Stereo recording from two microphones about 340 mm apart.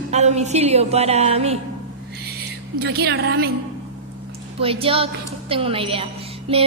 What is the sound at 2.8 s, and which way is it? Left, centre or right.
Speech, right.